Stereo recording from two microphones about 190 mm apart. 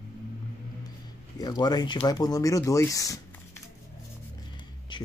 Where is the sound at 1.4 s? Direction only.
20° left (ahead or behind).